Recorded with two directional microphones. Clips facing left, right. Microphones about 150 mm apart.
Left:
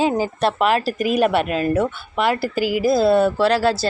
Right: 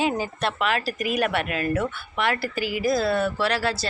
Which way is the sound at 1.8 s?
25° left (ahead or behind).